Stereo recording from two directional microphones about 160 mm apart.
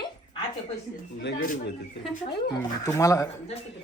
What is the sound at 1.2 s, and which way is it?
Speech, 75° left (ahead or behind).